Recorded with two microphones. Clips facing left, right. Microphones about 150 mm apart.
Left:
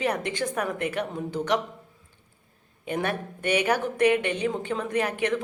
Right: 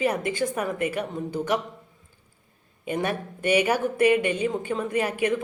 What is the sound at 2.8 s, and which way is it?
A woman's voice, 10° right (ahead or behind).